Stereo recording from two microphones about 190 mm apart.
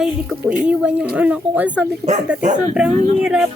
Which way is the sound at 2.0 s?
35° right (ahead or behind).